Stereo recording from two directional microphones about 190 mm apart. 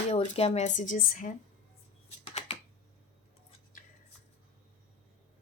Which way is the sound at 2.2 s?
35° left (ahead or behind).